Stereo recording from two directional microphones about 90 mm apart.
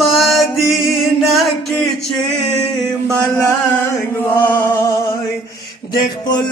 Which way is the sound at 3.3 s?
35° left (ahead or behind).